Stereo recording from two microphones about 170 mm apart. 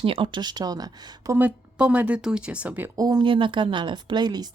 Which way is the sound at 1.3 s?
10° right (ahead or behind).